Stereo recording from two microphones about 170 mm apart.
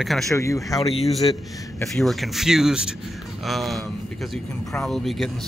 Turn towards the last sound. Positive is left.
turn(degrees=0)  # may be behind; listen again after turning